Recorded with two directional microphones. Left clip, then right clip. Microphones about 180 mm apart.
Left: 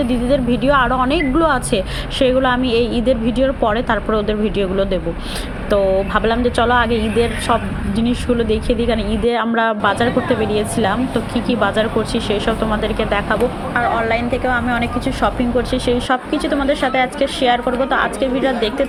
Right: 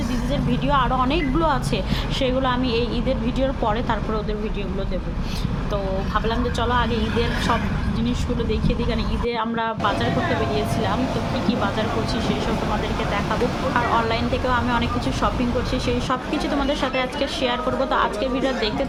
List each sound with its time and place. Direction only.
0.3 s speech: 25° left (ahead or behind)
5.7 s speech: 30° left (ahead or behind)
11.4 s speech: 25° left (ahead or behind)
13.7 s a woman's voice: 15° left (ahead or behind)
16.6 s speech: 20° left (ahead or behind)